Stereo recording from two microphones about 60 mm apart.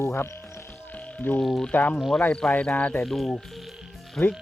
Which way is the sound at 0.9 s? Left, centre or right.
Left.